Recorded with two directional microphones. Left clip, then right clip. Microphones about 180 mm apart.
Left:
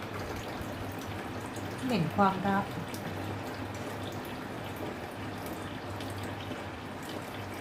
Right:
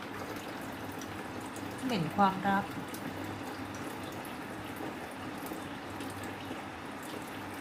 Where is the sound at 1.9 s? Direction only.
20° right (ahead or behind).